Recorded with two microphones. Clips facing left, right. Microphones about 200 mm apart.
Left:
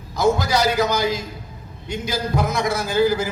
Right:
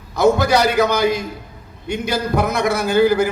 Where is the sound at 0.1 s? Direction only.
60° right (ahead or behind).